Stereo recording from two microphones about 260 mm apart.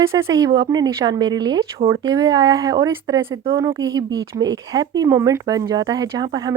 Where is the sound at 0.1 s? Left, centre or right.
Centre.